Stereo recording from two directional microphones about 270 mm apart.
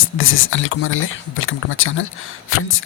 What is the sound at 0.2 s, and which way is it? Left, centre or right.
Speech, left.